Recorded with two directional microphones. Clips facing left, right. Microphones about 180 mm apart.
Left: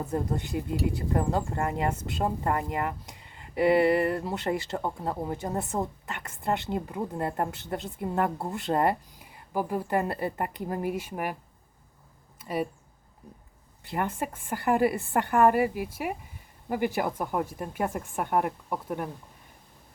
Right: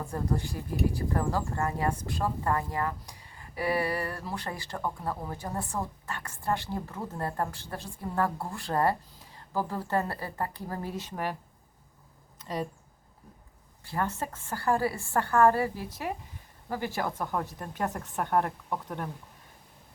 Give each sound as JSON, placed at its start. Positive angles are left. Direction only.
{"t": 0.0, "sound": "speech", "side_deg": 20}
{"t": 12.4, "sound": "a sound", "side_deg": 10}
{"t": 13.8, "sound": "speech", "side_deg": 20}